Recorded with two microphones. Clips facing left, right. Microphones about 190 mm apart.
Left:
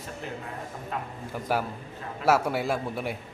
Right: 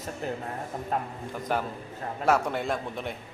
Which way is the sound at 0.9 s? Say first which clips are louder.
Right 4 dB; 45° right (ahead or behind).